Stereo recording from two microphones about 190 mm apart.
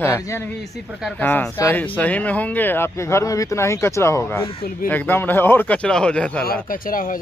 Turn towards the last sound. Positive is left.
turn(degrees=45)  # may be behind; listen again after turning